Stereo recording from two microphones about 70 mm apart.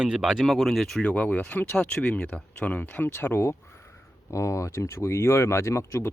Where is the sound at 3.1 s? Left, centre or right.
Left.